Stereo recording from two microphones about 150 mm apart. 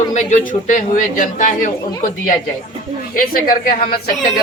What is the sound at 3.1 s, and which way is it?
Speech, 75° left (ahead or behind).